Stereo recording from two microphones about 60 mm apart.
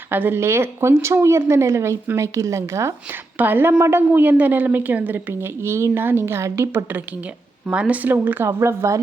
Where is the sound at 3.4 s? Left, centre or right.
Right.